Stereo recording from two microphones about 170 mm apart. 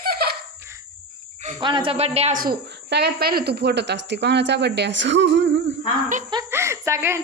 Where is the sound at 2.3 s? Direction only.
60° right (ahead or behind); by 5.7 s 90° right.